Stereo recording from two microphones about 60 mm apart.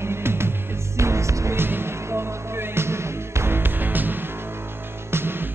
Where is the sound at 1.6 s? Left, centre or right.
Right.